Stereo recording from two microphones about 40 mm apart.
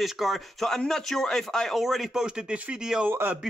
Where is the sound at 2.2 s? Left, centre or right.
Right.